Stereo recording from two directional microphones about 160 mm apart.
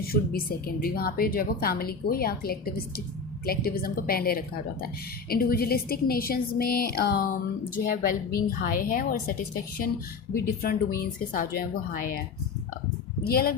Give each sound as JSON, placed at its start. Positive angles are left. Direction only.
{"t": 0.1, "sound": "a woman's voice", "side_deg": 70}
{"t": 13.2, "sound": "a woman's voice", "side_deg": 70}